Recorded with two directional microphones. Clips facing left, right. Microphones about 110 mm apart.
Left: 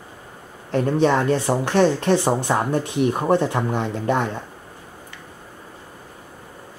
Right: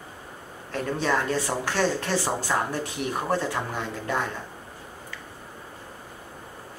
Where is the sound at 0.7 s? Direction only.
25° left (ahead or behind).